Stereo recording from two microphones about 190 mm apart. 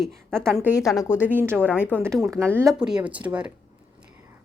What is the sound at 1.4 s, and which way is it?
Speech, 10° right (ahead or behind).